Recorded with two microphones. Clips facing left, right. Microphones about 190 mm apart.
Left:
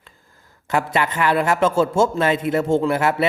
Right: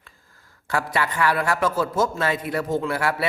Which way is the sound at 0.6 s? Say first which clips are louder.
Left 4 dB; 20° left (ahead or behind).